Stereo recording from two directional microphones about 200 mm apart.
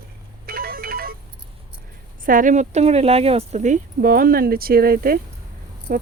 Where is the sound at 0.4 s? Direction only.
50° right (ahead or behind).